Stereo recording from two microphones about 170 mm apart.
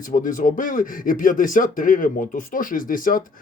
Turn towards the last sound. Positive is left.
turn(degrees=55)  # may be behind; listen again after turning